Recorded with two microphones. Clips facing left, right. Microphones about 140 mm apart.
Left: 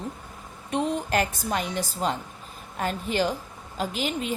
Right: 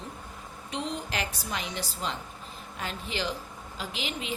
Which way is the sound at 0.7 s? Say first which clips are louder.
Left 8 dB; 50° left (ahead or behind).